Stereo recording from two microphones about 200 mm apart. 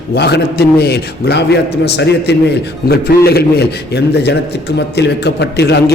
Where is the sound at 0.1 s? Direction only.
55° left (ahead or behind).